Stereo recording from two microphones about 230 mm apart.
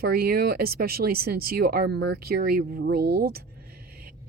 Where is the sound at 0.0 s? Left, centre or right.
Right.